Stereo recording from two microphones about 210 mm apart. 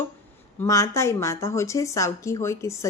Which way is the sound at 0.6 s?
15° left (ahead or behind).